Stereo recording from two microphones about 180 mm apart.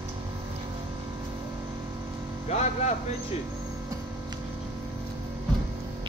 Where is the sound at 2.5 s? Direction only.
40° left (ahead or behind).